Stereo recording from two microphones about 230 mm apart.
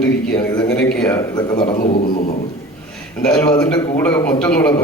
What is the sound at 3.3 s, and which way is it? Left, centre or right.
A man's voice, centre.